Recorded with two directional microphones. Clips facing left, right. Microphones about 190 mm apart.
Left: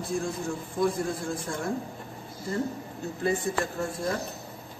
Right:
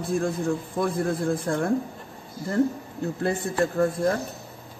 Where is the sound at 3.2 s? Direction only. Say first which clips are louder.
Right 2 dB; 55° right (ahead or behind).